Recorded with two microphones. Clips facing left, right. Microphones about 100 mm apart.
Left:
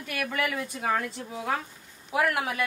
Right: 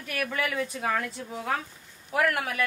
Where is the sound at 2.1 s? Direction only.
20° left (ahead or behind).